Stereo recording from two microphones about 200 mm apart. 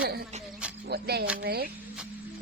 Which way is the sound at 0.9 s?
55° right (ahead or behind).